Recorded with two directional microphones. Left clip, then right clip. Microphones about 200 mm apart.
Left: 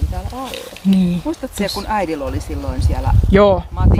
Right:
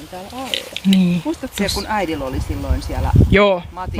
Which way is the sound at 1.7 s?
30° left (ahead or behind).